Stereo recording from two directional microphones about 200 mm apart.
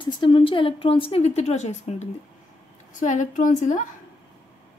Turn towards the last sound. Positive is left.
turn(degrees=40)  # may be behind; listen again after turning